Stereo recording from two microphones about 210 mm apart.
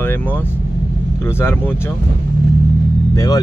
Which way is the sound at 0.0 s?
10° left (ahead or behind).